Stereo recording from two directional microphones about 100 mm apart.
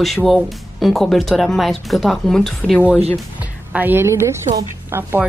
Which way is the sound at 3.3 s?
15° right (ahead or behind).